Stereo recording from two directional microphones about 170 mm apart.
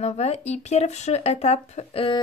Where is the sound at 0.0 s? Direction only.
40° left (ahead or behind).